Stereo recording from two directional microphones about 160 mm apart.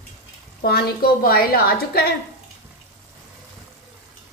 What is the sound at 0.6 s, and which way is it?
A woman's voice, 70° left (ahead or behind).